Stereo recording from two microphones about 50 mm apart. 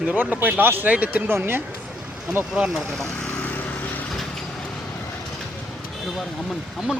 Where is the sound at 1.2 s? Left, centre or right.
Right.